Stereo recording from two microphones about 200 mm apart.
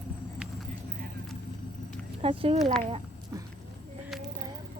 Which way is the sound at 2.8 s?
25° right (ahead or behind).